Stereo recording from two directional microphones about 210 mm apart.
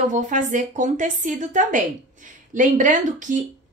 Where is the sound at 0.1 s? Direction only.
35° right (ahead or behind).